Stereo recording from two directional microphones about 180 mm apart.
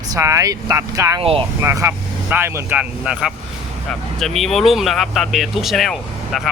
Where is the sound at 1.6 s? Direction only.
15° right (ahead or behind).